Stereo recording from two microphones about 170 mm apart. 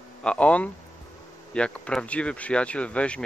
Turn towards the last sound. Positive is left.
turn(degrees=5)  # may be behind; listen again after turning